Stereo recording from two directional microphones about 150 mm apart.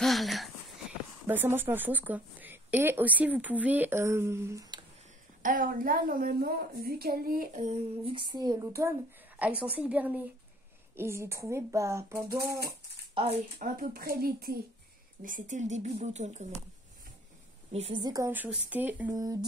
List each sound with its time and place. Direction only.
0.0 s a sound: centre (ahead or behind)
1.2 s speech: 15° right (ahead or behind)
5.4 s a woman's voice: 65° right (ahead or behind)
7.6 s child singing: 40° right (ahead or behind); by 8.9 s 20° right (ahead or behind)
9.4 s speech: 10° right (ahead or behind)
13.1 s child singing: 40° right (ahead or behind)
13.7 s a woman's voice: 85° right
15.2 s speech: 60° right (ahead or behind)
17.7 s child singing: 40° right (ahead or behind)
18.0 s speech: 20° right (ahead or behind)
18.3 s speech: 10° right (ahead or behind)
19.1 s speech: 25° right (ahead or behind)